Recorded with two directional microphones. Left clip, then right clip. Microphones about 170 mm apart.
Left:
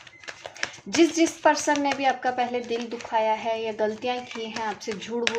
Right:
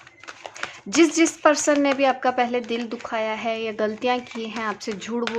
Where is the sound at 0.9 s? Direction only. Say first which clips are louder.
Right 3 dB; 45° right (ahead or behind).